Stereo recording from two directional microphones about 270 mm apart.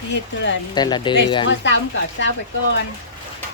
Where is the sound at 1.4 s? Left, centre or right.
Left.